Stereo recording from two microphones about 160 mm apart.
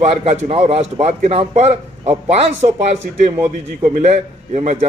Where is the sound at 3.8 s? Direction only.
50° right (ahead or behind).